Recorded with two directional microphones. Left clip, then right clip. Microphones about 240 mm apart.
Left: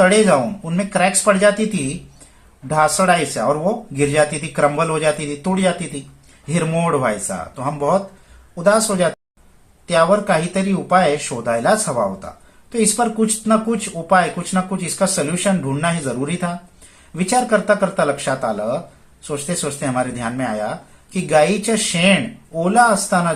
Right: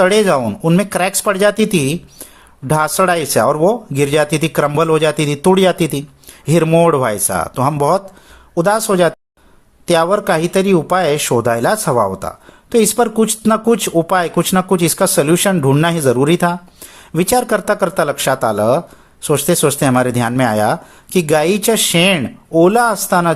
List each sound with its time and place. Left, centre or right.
0.0 s speech: right
2.6 s speech: right